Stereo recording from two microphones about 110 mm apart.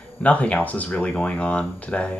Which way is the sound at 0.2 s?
10° left (ahead or behind).